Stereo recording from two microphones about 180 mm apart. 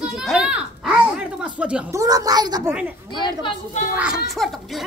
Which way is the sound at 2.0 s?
20° right (ahead or behind).